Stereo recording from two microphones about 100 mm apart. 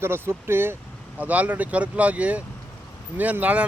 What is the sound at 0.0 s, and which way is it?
Speech, 25° right (ahead or behind).